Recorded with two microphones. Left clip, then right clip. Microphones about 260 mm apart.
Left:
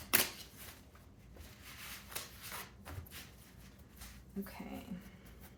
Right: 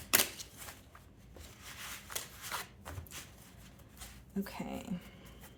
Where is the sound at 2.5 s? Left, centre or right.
Right.